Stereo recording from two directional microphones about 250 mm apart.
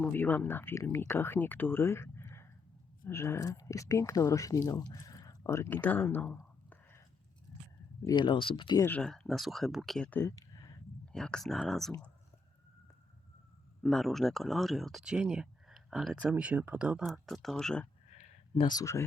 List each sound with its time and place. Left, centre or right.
0.0 s speech: centre
8.0 s speech: centre
11.1 s speech: centre
13.8 s speech: centre
18.2 s a sound: left